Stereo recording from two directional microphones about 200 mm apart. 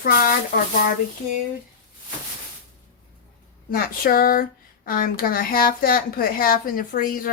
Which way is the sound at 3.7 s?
45° left (ahead or behind).